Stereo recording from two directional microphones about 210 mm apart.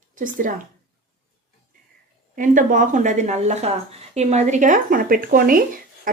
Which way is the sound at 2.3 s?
40° right (ahead or behind).